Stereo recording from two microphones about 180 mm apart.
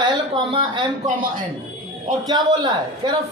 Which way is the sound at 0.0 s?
25° right (ahead or behind).